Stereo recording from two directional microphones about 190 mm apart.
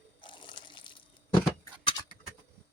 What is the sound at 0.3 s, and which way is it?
Water, 25° left (ahead or behind).